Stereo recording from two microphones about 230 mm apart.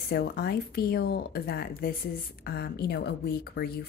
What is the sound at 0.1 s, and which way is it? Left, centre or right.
Speech, left.